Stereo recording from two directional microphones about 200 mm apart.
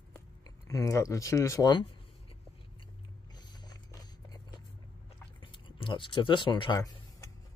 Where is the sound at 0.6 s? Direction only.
15° left (ahead or behind).